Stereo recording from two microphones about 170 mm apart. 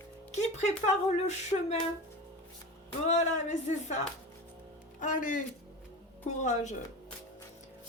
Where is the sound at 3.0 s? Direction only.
45° left (ahead or behind).